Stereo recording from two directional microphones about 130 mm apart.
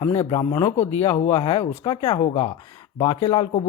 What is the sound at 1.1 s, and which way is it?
Speech, 35° left (ahead or behind).